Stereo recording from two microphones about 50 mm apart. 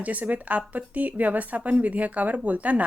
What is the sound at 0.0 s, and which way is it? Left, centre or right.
A woman's voice, right.